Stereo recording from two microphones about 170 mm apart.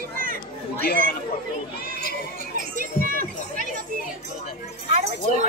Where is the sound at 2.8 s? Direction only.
55° right (ahead or behind).